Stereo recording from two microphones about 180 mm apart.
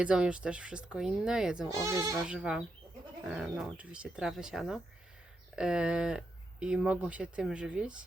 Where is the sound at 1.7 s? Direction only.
15° right (ahead or behind).